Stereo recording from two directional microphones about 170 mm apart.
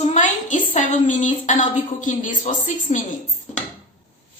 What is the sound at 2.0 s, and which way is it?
A woman's voice, 50° left (ahead or behind).